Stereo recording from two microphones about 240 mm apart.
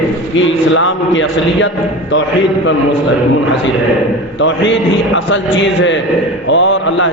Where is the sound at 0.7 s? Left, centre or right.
Left.